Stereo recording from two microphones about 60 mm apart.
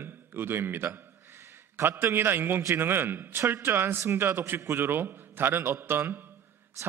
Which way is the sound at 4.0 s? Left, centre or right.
Right.